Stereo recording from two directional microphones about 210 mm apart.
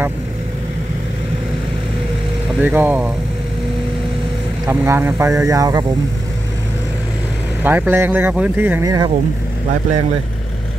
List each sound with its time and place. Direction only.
2.6 s speech: 10° right (ahead or behind)
4.6 s speech: 10° right (ahead or behind)
7.6 s speech: 10° right (ahead or behind)